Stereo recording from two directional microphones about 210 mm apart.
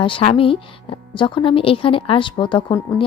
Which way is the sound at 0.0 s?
25° left (ahead or behind).